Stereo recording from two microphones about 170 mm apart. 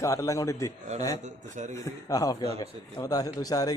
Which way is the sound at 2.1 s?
20° left (ahead or behind).